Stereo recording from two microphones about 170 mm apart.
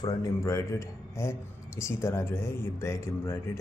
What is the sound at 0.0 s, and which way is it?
Speech, 20° left (ahead or behind).